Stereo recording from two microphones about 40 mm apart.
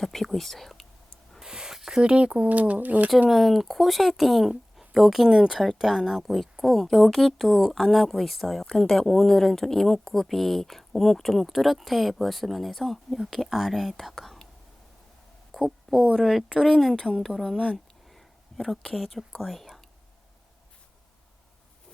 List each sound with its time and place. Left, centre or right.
0.0 s speech: centre
1.4 s a sound: centre
2.0 s speech: right
2.5 s speech: right
3.2 s speech: centre
15.5 s speech: centre
18.1 s a sound: centre
19.5 s speech: centre